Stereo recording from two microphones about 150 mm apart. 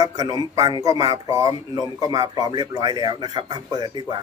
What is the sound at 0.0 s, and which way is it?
Speech, 25° right (ahead or behind).